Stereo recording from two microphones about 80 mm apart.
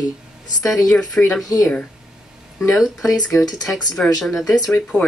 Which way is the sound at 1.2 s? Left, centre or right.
Centre.